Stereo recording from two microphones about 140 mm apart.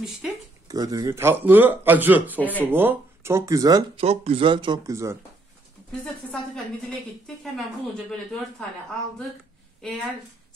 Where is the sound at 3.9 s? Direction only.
45° right (ahead or behind).